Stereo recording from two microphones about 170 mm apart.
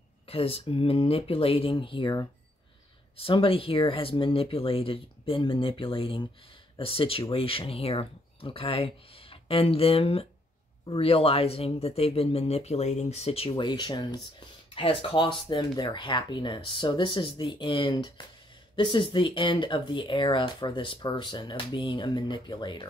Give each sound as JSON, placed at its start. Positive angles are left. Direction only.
{"t": 0.3, "sound": "speech", "side_deg": 35}